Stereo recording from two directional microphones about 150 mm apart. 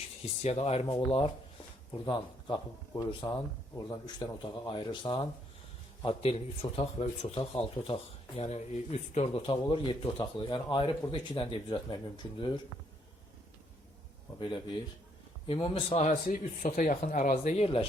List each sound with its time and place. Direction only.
0.4 s speech: 45° left (ahead or behind)
1.9 s speech: 30° left (ahead or behind)
14.3 s speech: 30° left (ahead or behind)
16.0 s speech: 55° left (ahead or behind); by 17.8 s 40° left (ahead or behind)